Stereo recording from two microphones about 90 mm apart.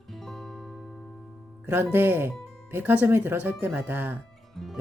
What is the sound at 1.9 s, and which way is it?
Speech, 20° right (ahead or behind).